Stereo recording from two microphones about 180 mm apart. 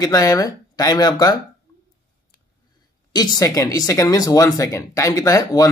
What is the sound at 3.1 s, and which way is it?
Speech, 20° left (ahead or behind).